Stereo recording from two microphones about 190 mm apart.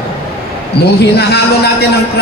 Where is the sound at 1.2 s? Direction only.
60° left (ahead or behind).